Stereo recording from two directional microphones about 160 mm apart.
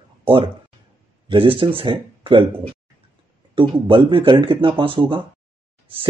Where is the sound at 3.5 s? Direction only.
35° right (ahead or behind).